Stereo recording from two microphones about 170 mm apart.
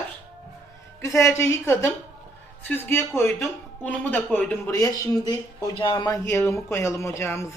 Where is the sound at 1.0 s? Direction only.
20° left (ahead or behind).